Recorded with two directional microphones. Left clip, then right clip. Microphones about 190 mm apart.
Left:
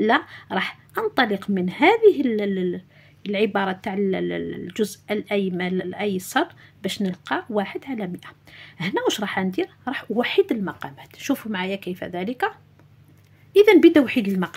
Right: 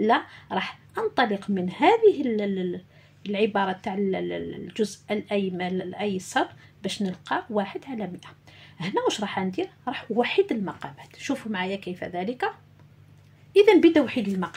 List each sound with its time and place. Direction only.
0.0 s speech: 35° left (ahead or behind)